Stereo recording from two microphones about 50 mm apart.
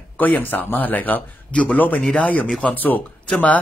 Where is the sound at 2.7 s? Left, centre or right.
Left.